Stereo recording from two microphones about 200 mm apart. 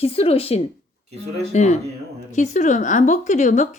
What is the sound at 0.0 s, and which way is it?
A woman's voice, 30° left (ahead or behind).